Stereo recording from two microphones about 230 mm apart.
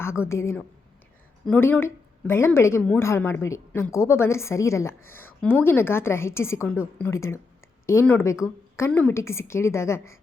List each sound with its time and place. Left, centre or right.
0.3 s a woman's voice: centre
5.0 s speech: left
5.4 s a woman's voice: centre